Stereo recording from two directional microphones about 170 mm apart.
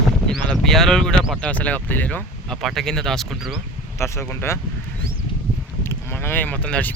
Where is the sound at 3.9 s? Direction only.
15° left (ahead or behind).